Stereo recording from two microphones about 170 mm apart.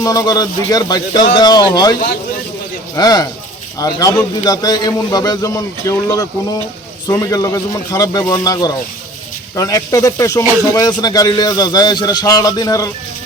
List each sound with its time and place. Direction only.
0.0 s a man's voice: 20° left (ahead or behind)